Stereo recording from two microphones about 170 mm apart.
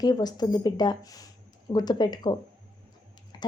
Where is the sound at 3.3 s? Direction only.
25° left (ahead or behind).